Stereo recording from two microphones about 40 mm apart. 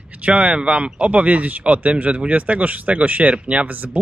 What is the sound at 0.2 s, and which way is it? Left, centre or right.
Speech, right.